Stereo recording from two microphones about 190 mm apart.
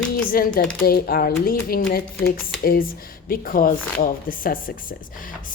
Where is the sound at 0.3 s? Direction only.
50° left (ahead or behind).